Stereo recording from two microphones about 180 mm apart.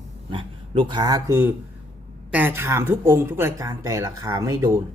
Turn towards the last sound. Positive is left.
turn(degrees=-15)  # may be behind; listen again after turning